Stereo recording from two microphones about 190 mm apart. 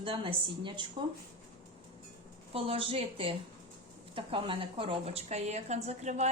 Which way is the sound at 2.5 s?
30° right (ahead or behind).